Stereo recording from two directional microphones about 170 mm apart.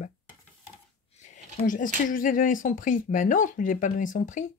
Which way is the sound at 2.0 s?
50° left (ahead or behind).